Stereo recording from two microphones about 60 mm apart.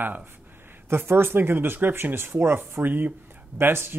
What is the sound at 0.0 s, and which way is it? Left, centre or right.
Speech, right.